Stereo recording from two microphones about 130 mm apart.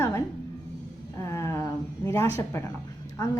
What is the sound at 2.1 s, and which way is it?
Speech, 20° left (ahead or behind).